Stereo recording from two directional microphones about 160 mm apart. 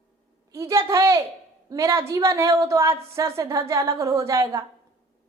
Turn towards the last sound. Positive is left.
turn(degrees=-20)  # may be behind; listen again after turning